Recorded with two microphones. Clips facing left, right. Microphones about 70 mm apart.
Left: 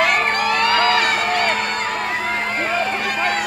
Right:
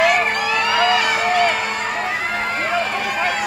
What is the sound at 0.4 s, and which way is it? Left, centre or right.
Music, left.